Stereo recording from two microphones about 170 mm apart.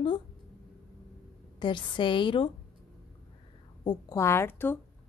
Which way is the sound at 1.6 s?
30° left (ahead or behind).